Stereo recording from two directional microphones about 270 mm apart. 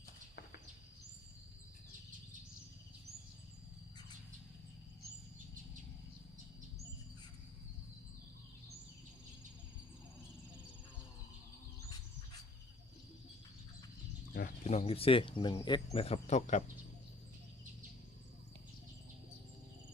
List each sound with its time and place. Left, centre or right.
14.3 s speech: left